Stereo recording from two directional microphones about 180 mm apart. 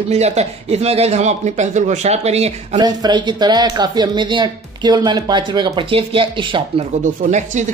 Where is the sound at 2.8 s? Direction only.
25° right (ahead or behind).